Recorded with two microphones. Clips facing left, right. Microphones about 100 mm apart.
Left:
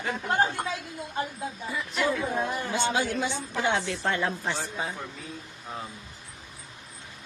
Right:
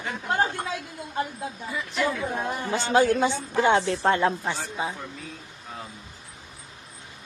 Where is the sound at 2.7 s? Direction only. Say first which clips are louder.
Right 9 dB; 45° right (ahead or behind).